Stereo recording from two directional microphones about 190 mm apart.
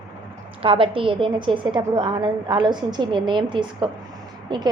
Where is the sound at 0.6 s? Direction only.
30° right (ahead or behind).